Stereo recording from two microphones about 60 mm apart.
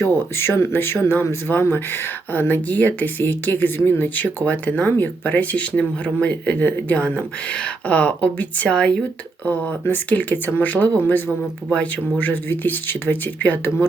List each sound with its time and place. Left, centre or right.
0.0 s speech: left; by 9.0 s centre
9.5 s speech: left